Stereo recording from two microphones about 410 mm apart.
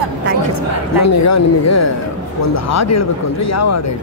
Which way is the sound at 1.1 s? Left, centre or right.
Left.